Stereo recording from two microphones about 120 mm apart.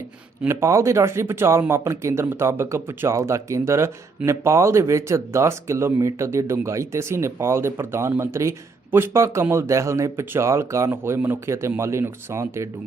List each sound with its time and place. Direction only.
0.4 s speech: 20° right (ahead or behind)